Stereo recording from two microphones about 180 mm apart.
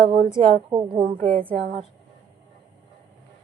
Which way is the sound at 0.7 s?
20° right (ahead or behind).